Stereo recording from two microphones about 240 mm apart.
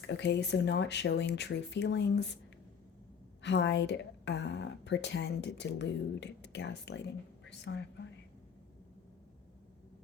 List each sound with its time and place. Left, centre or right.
0.1 s a woman's voice: left
3.4 s a woman's voice: left